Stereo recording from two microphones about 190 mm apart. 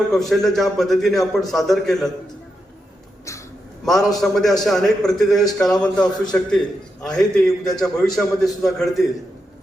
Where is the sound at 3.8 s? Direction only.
Centre (ahead or behind).